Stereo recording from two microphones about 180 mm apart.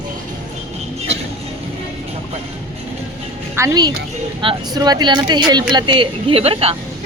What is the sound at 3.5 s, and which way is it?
A woman's voice, 20° right (ahead or behind).